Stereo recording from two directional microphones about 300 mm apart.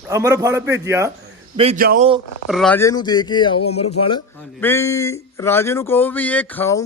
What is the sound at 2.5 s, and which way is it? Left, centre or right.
Speech, centre.